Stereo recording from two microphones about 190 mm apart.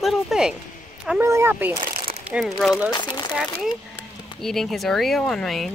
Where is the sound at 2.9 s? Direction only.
20° left (ahead or behind).